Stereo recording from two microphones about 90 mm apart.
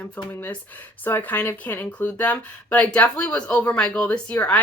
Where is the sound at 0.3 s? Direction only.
20° left (ahead or behind).